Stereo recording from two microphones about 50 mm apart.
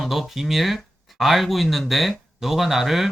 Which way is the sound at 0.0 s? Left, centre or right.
Centre.